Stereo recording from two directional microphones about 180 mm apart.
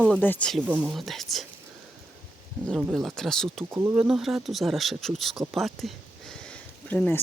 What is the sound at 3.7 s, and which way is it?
Speech, 15° right (ahead or behind).